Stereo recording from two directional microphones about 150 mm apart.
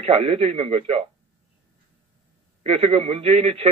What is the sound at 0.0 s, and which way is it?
A man's voice, 40° right (ahead or behind).